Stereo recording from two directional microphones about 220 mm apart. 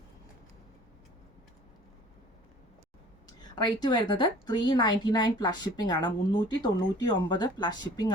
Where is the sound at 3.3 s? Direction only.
20° left (ahead or behind).